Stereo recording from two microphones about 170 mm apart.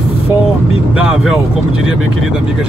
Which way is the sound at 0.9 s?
5° right (ahead or behind).